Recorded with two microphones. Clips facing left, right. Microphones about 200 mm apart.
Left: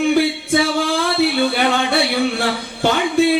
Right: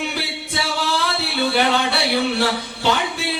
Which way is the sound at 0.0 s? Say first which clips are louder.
Left 11 dB; 45° left (ahead or behind).